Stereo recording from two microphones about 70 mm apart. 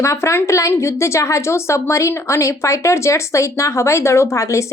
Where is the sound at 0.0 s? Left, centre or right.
Left.